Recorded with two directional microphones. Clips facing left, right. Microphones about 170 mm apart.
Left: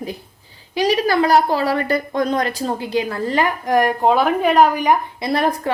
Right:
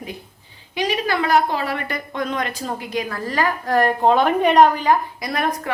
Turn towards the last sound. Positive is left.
turn(degrees=30)  # may be behind; listen again after turning